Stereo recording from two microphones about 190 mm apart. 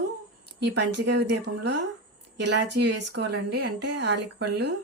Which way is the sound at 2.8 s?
60° right (ahead or behind).